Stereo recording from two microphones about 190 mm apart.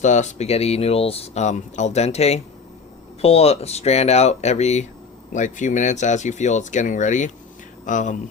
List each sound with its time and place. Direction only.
0.0 s speech: 40° left (ahead or behind)